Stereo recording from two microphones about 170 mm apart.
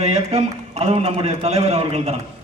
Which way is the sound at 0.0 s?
40° right (ahead or behind).